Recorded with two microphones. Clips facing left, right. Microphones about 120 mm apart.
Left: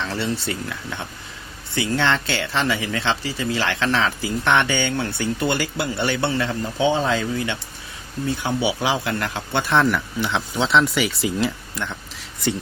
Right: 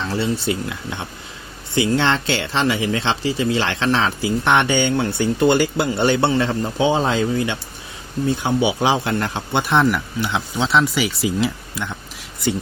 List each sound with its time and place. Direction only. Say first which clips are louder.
0.1 s speech: right 4 dB; 15° right (ahead or behind)
9.5 s speech: right 1 dB; 15° right (ahead or behind)
10.2 s speech: right 1 dB; 5° right (ahead or behind)